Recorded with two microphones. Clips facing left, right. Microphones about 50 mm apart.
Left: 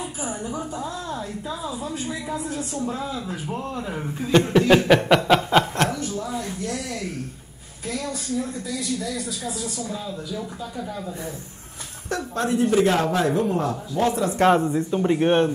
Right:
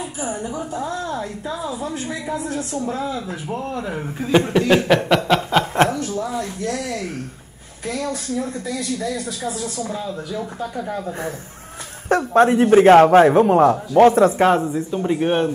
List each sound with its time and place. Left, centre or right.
0.4 s speech: right
0.8 s a woman's voice: right
3.8 s speech: right; by 5.7 s centre
5.9 s speech: right
8.6 s speech: right
10.9 s a man's voice: right
14.4 s speech: centre